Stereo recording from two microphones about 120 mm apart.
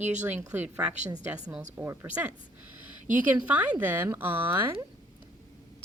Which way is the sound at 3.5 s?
10° right (ahead or behind).